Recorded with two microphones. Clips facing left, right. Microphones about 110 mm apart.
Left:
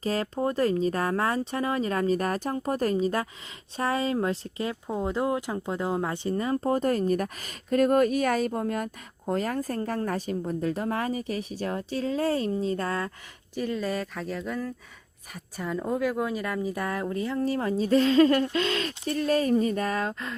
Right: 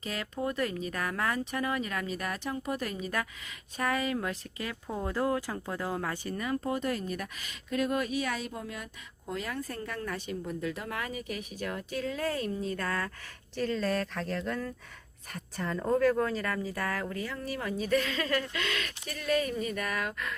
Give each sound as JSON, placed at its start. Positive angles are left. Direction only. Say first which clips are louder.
{"t": 0.0, "sound": "speech", "louder": "left 7 dB", "side_deg": 35}
{"t": 13.6, "sound": "speech", "louder": "left 1 dB", "side_deg": 10}